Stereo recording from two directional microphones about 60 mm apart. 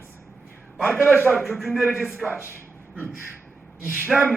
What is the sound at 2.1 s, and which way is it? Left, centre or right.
Speech, right.